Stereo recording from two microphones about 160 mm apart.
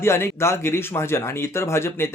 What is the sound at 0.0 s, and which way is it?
Speech, 15° left (ahead or behind).